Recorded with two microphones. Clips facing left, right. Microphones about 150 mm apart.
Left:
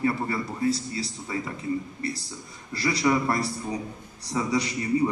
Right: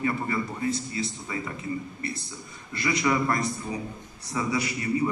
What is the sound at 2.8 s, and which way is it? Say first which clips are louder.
A man's voice: left 1 dB; 30° left (ahead or behind).